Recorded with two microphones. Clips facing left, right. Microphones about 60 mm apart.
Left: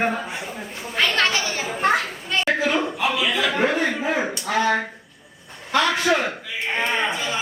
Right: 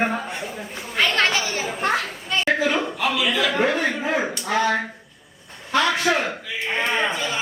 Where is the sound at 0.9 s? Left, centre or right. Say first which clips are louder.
Right 1 dB; centre.